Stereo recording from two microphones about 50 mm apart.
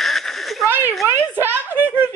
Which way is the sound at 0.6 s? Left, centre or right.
Right.